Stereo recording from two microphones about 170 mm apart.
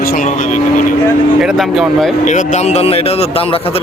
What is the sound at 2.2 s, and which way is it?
A man's voice, 45° left (ahead or behind).